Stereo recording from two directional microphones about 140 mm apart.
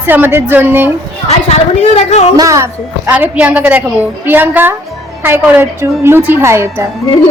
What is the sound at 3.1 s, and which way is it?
A woman's voice, 10° right (ahead or behind).